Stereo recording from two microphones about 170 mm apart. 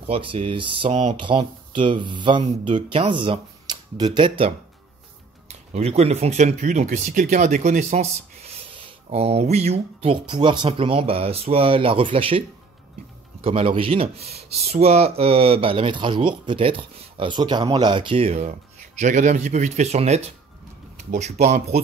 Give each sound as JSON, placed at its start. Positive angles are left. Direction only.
{"t": 0.0, "sound": "speech", "side_deg": -30}